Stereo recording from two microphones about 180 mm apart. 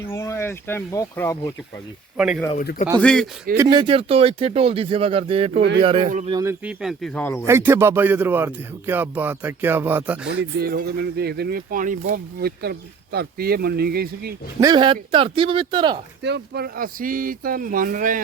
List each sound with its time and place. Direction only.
0.1 s speech: 15° left (ahead or behind)
2.1 s speech: 5° right (ahead or behind)
2.6 s speech: 50° left (ahead or behind)
3.0 s speech: 5° left (ahead or behind)
3.6 s speech: 25° right (ahead or behind)
6.4 s speech: 10° right (ahead or behind); by 7.4 s 10° left (ahead or behind)
7.4 s speech: 15° right (ahead or behind)
10.6 s speech: 55° right (ahead or behind)
14.6 s speech: 25° right (ahead or behind)
16.2 s speech: 65° right (ahead or behind); by 18.2 s 50° right (ahead or behind)